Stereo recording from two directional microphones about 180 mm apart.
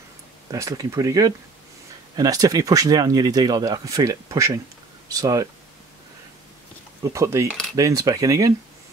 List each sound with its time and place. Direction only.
0.5 s speech: 20° right (ahead or behind)
7.0 s speech: 15° right (ahead or behind)